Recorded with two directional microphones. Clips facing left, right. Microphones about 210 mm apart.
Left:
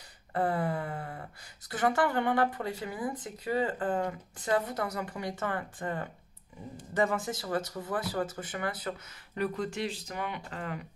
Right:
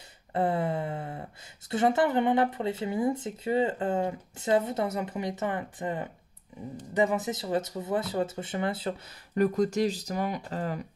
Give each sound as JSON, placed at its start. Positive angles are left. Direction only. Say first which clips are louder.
{"t": 0.3, "sound": "a sound", "louder": "right 2 dB", "side_deg": -25}
{"t": 1.7, "sound": "speech", "louder": "right 4 dB", "side_deg": -25}
{"t": 9.4, "sound": "speech", "louder": "right 8 dB", "side_deg": -45}